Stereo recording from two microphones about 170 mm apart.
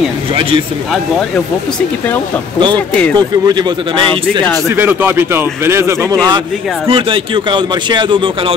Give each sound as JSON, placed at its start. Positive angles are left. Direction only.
{"t": 3.4, "sound": "a man's voice", "side_deg": -25}
{"t": 4.6, "sound": "speech", "side_deg": -10}
{"t": 6.9, "sound": "a man's voice", "side_deg": -30}